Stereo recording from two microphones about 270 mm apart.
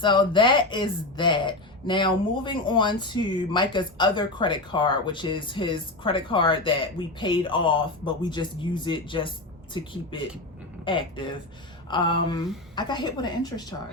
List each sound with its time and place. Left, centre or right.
0.0 s speech: centre